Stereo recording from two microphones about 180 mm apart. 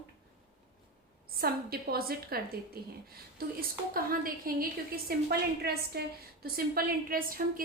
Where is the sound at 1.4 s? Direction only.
55° right (ahead or behind).